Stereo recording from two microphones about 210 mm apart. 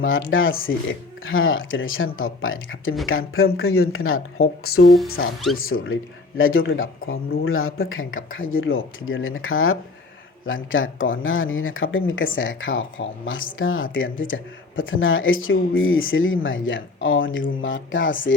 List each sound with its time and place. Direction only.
0.0 s speech: 65° left (ahead or behind); by 4.9 s 90° left
5.0 s speech: 75° left (ahead or behind)
10.4 s speech: 70° left (ahead or behind)